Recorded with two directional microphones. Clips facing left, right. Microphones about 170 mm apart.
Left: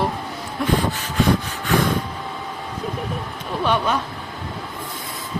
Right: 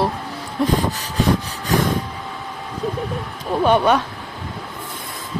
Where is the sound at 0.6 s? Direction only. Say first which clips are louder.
Right 2 dB; 35° right (ahead or behind).